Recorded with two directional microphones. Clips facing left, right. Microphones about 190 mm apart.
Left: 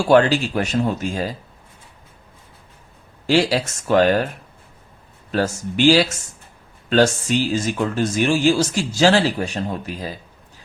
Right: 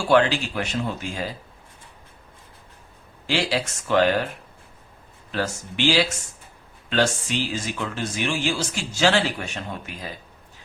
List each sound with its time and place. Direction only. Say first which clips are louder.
0.1 s speech: left 4 dB; 40° left (ahead or behind)
3.2 s speech: left 7 dB; 45° left (ahead or behind)
5.3 s speech: left 6 dB; 45° left (ahead or behind)